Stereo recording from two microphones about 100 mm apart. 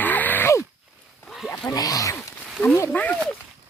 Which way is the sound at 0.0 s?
20° left (ahead or behind).